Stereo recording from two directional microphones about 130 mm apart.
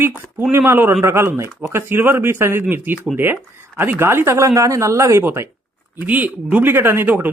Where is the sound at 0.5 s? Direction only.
15° right (ahead or behind).